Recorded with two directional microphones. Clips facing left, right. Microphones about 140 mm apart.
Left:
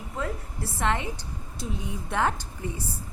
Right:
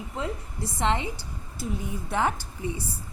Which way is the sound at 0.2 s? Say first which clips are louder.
Even; 20° right (ahead or behind).